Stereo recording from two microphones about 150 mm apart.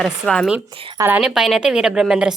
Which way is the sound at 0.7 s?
35° right (ahead or behind).